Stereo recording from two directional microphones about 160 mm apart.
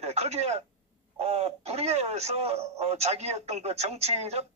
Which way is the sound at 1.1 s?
40° right (ahead or behind).